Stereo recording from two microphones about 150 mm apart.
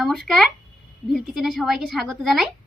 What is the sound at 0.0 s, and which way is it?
A woman's voice, centre (ahead or behind).